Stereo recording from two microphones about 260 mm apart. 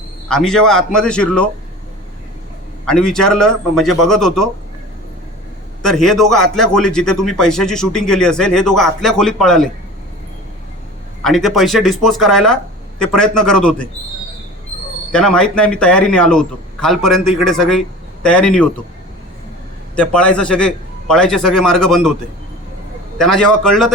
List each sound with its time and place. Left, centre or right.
0.3 s a man's voice: centre
2.8 s a man's voice: centre
5.8 s a man's voice: centre
11.2 s a man's voice: centre
15.1 s a man's voice: centre
20.0 s a man's voice: centre
23.1 s a man's voice: centre